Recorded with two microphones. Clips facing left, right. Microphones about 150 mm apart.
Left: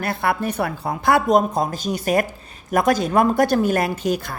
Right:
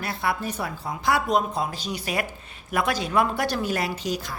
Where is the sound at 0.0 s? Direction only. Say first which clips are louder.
Left 5 dB; 55° left (ahead or behind).